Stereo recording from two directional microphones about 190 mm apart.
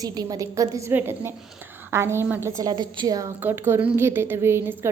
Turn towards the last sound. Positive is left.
turn(degrees=-15)  # may be behind; listen again after turning